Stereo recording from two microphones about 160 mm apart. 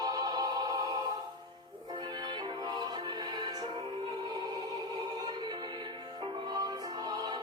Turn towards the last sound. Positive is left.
turn(degrees=-25)  # may be behind; listen again after turning